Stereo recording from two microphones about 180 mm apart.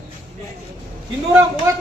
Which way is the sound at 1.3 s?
15° right (ahead or behind).